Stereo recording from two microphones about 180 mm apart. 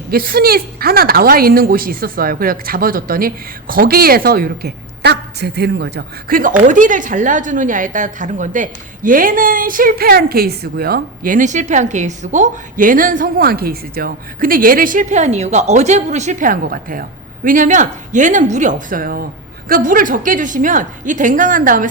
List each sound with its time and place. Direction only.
0.1 s a woman's voice: 55° right (ahead or behind)